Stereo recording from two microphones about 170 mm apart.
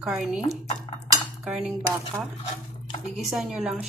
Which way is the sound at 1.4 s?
Centre (ahead or behind).